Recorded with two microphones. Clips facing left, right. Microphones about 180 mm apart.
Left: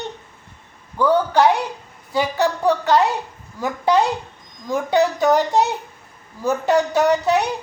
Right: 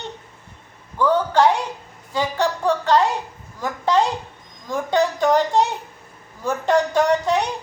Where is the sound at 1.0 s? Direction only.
10° left (ahead or behind).